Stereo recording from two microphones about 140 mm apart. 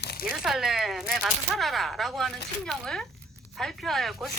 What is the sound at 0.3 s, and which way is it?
Speech, centre (ahead or behind).